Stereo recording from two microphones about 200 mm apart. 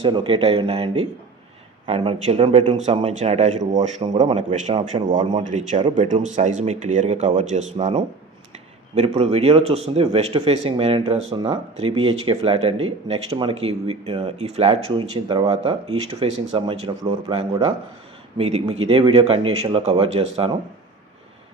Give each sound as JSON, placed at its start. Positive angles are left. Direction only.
{"t": 0.0, "sound": "speech", "side_deg": -25}
{"t": 1.9, "sound": "speech", "side_deg": -30}
{"t": 6.2, "sound": "speech", "side_deg": -35}